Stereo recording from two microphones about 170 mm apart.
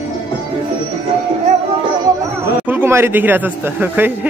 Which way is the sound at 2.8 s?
15° right (ahead or behind).